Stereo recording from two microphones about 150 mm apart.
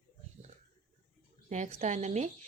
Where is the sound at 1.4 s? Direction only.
55° right (ahead or behind).